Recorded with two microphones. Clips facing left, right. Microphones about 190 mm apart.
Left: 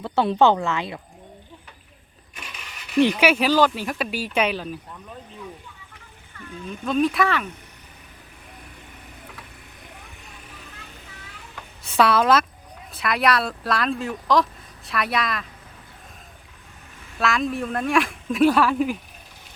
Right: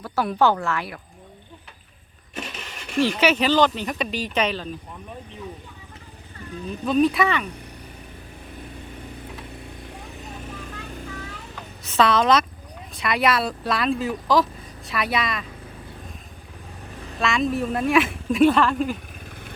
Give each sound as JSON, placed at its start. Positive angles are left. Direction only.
{"t": 0.0, "sound": "speech", "side_deg": 25}
{"t": 2.6, "sound": "a sound", "side_deg": -45}
{"t": 3.2, "sound": "speech", "side_deg": 10}
{"t": 6.8, "sound": "a woman's voice", "side_deg": 0}
{"t": 11.9, "sound": "a woman's voice", "side_deg": 10}
{"t": 17.2, "sound": "a woman's voice", "side_deg": 0}